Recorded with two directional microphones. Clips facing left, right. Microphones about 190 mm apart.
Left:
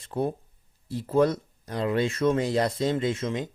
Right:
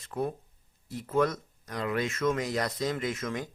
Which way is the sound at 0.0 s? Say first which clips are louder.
Left 4 dB; 30° left (ahead or behind).